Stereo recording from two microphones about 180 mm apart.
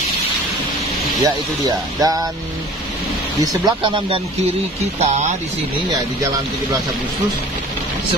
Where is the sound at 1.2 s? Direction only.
20° right (ahead or behind).